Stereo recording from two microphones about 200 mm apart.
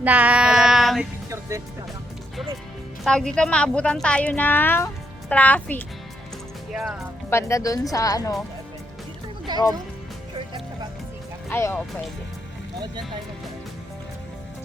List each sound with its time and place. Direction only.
0.0 s child singing: 5° right (ahead or behind)
1.3 s music: 15° right (ahead or behind)
3.0 s speech: 5° left (ahead or behind)
7.3 s speech: 15° left (ahead or behind)
9.5 s speech: 20° right (ahead or behind)
11.4 s speech: 10° left (ahead or behind)